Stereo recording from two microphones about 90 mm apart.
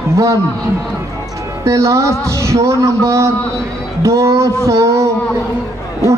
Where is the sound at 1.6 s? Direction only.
35° right (ahead or behind).